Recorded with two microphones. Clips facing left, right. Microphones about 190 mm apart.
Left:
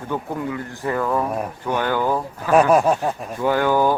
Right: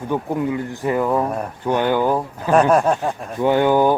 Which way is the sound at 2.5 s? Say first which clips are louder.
Even; 5° left (ahead or behind).